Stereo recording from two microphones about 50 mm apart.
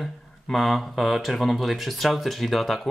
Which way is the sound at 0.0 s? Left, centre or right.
Centre.